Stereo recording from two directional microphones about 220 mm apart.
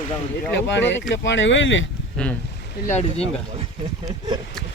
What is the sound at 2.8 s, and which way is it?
Speech, 30° left (ahead or behind).